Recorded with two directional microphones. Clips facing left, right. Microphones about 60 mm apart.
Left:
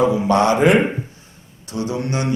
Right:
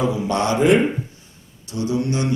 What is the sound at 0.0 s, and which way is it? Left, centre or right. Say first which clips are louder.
Speech: left 5 dB; left.